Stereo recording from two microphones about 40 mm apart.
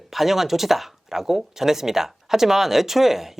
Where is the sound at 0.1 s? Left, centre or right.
Centre.